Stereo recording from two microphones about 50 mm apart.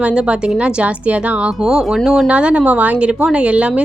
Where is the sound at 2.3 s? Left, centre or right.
Right.